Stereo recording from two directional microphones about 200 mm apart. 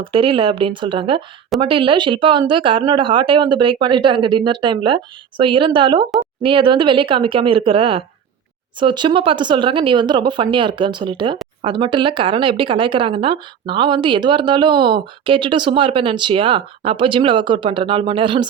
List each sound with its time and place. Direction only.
0.0 s speech: 25° right (ahead or behind)